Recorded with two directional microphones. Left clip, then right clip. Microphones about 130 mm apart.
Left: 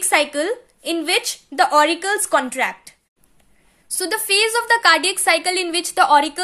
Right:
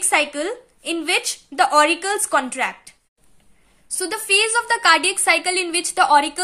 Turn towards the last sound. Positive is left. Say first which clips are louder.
# left 1 dB
turn(degrees=20)  # may be behind; listen again after turning